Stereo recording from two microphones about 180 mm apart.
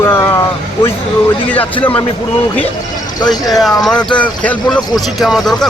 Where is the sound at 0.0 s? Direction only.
15° left (ahead or behind).